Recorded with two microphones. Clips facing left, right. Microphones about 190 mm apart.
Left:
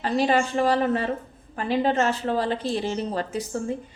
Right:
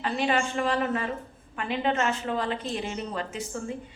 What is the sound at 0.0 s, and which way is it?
A woman's voice, 35° left (ahead or behind).